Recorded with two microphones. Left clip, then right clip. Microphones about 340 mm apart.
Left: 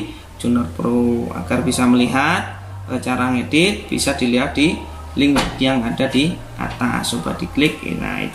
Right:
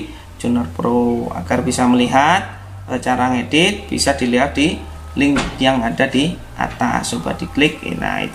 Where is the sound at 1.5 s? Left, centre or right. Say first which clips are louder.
Right 1 dB; centre.